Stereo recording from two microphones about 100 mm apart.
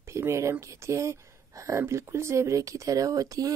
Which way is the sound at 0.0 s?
30° right (ahead or behind).